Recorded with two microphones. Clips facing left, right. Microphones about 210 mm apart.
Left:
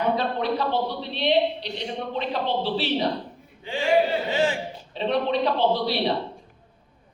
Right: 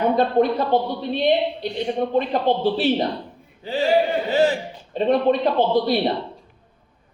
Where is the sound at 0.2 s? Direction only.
50° right (ahead or behind).